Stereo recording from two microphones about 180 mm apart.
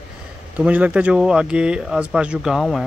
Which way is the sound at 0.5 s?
5° right (ahead or behind).